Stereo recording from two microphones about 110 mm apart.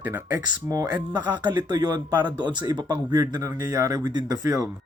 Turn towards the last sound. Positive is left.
turn(degrees=-30)  # may be behind; listen again after turning